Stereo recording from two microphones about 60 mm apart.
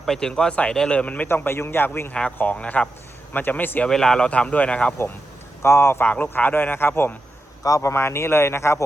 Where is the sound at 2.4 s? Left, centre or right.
Left.